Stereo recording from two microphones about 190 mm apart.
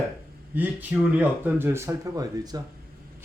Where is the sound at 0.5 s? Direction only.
10° right (ahead or behind).